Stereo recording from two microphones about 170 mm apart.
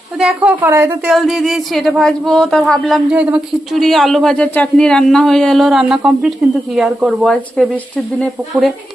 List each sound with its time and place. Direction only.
0.2 s a woman's voice: 5° right (ahead or behind)